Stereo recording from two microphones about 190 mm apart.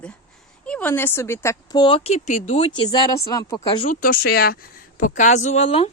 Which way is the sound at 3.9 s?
45° left (ahead or behind).